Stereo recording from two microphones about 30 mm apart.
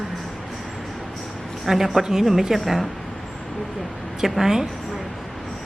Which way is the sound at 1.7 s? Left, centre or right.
Centre.